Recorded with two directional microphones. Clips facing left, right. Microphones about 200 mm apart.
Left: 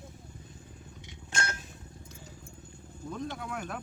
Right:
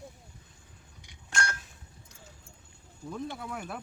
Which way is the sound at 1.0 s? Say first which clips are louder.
Right 2 dB; 25° left (ahead or behind).